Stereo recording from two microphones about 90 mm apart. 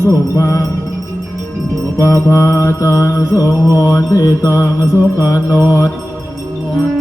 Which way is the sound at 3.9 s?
35° left (ahead or behind).